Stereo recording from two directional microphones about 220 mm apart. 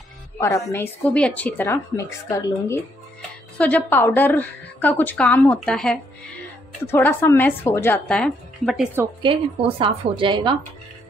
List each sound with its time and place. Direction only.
0.4 s a woman's voice: 15° left (ahead or behind)
9.2 s a woman's voice: 25° right (ahead or behind)